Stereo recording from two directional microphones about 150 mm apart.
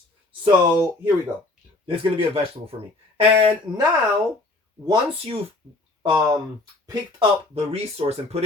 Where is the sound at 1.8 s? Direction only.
35° right (ahead or behind).